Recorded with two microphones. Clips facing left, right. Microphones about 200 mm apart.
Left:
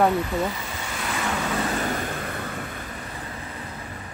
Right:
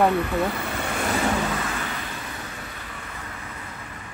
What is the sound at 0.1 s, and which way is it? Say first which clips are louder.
Speech: right 1 dB; 60° right (ahead or behind).